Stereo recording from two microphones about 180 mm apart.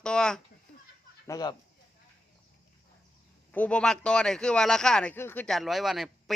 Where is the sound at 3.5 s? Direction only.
5° left (ahead or behind).